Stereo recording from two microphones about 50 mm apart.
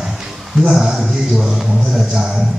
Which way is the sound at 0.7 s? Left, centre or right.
Centre.